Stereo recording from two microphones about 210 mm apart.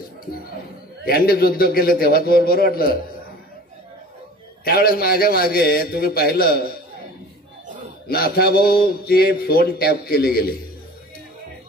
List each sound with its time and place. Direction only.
1.0 s speech: 45° left (ahead or behind)
4.6 s speech: 45° left (ahead or behind)
8.1 s speech: 45° left (ahead or behind)